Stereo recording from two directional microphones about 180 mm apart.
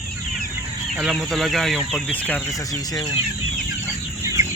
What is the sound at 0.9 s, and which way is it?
Speech, centre (ahead or behind).